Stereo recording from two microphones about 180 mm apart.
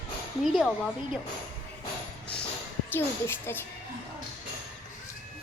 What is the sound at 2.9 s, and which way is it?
Speech, 10° left (ahead or behind).